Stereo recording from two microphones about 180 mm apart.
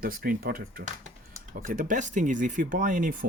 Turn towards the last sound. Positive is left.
turn(degrees=-50)  # may be behind; listen again after turning